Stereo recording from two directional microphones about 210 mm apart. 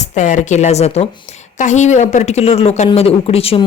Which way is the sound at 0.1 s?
35° left (ahead or behind).